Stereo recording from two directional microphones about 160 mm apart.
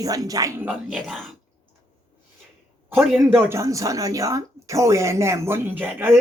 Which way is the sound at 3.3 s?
15° right (ahead or behind).